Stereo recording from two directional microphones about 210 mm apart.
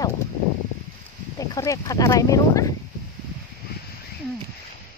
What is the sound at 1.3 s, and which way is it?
Speech, 15° left (ahead or behind).